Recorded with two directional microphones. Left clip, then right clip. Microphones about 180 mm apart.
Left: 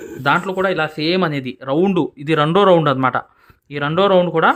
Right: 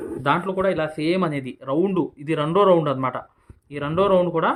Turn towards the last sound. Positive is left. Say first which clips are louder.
# left 5 dB
turn(degrees=40)  # may be behind; listen again after turning